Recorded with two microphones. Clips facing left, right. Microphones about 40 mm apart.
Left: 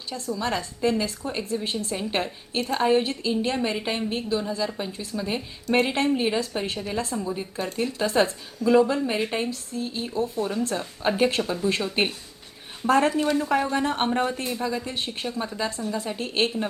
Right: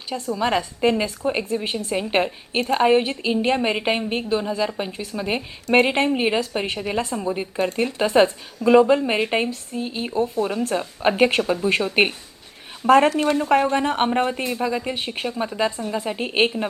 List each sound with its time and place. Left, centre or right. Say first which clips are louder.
0.1 s a woman's voice: right 6 dB; right
7.5 s a woman's voice: right 5 dB; centre
13.1 s speech: right 4 dB; right
13.7 s a woman's voice: right 4 dB; right